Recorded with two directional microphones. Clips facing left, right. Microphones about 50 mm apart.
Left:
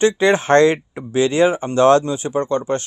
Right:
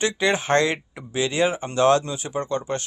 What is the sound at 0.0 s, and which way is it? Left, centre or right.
Speech, left.